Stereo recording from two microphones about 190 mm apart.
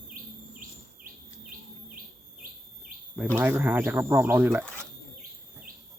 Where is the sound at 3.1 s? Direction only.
10° right (ahead or behind).